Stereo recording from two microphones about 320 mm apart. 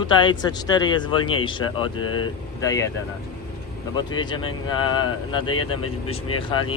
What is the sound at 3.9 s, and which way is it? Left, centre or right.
A man's voice, centre.